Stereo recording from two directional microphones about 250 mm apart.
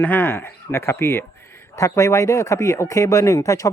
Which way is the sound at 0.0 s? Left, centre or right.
Centre.